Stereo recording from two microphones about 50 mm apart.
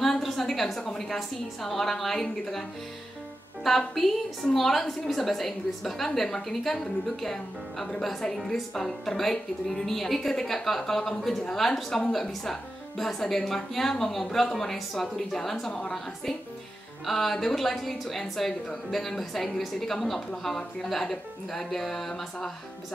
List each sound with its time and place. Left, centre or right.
0.0 s a woman's voice: centre
3.6 s a woman's voice: centre